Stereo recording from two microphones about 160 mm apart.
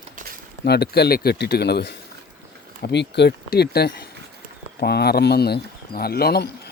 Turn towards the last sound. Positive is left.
turn(degrees=85)